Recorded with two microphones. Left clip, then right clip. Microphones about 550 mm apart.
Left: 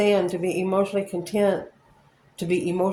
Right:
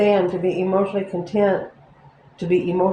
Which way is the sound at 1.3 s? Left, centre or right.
Left.